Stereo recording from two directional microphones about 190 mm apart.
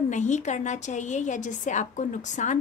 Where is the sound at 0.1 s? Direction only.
40° left (ahead or behind).